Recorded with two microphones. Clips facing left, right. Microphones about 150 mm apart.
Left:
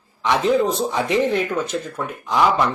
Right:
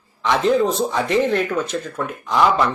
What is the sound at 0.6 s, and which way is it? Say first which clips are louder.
A man's voice: right 1 dB; 15° left (ahead or behind).